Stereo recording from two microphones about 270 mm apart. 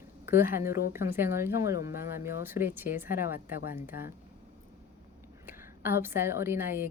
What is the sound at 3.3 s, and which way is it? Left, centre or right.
Speech, left.